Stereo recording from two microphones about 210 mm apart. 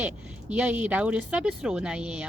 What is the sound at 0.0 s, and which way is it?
Speech, 5° right (ahead or behind).